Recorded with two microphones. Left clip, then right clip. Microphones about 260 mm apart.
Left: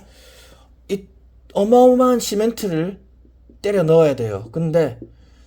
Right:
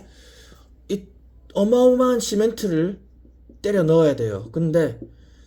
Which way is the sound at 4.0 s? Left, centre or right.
Left.